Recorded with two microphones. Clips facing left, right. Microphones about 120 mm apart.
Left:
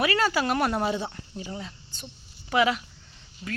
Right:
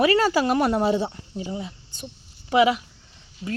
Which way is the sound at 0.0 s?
30° right (ahead or behind).